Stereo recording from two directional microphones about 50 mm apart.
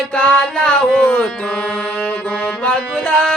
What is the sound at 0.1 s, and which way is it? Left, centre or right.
Speech, left.